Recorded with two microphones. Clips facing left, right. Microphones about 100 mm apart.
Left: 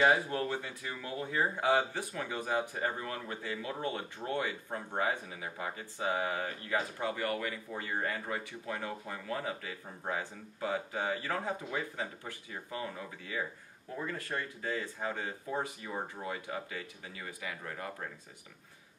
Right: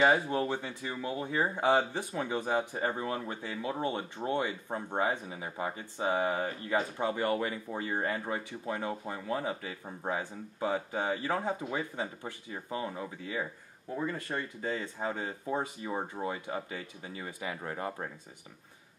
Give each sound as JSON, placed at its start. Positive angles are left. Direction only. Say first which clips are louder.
{"t": 0.3, "sound": "speech", "louder": "right 3 dB", "side_deg": -20}